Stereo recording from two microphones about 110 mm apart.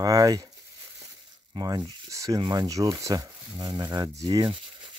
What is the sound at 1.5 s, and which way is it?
Speech, 40° right (ahead or behind).